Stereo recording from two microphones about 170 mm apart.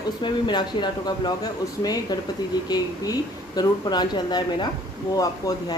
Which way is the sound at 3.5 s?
25° left (ahead or behind).